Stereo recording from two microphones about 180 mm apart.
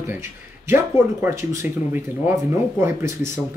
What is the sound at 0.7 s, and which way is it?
Speech, 15° right (ahead or behind).